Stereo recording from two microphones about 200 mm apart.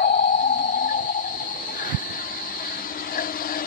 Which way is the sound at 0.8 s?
40° left (ahead or behind).